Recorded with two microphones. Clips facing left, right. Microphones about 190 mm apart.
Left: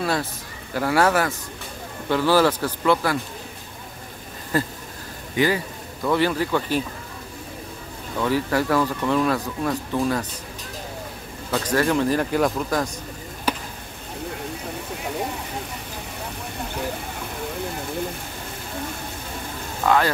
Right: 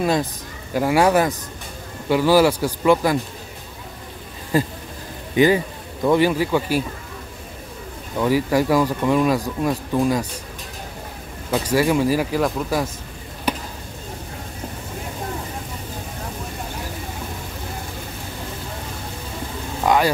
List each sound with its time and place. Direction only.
0.0 s speech: 15° right (ahead or behind)
4.5 s speech: 15° right (ahead or behind)
8.2 s speech: 15° right (ahead or behind)
11.5 s speech: 10° right (ahead or behind)
19.8 s vehicle: 15° right (ahead or behind)